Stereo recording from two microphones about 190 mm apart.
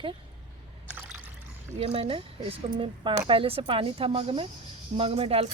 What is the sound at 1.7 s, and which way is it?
A woman's voice, 30° right (ahead or behind).